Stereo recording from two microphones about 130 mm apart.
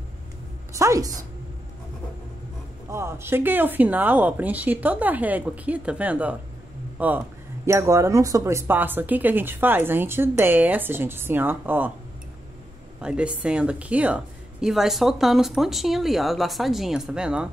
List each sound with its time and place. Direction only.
0.7 s a woman's voice: 25° right (ahead or behind)
2.9 s speech: 20° right (ahead or behind)
13.0 s a woman's voice: 10° right (ahead or behind)